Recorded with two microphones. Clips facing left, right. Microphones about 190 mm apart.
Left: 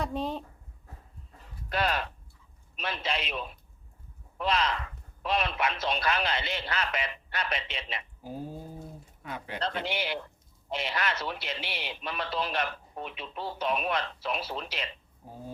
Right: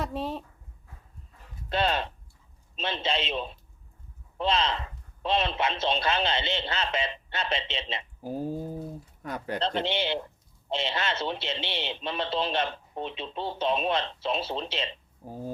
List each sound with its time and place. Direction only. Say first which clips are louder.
0.0 s speech: even; centre (ahead or behind)
1.7 s speech: right 3 dB; 25° right (ahead or behind)
9.2 s speech: right 6 dB; 40° right (ahead or behind)
9.6 s speech: right 4 dB; 25° right (ahead or behind)